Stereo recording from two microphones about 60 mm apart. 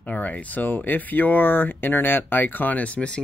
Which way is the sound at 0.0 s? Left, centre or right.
Left.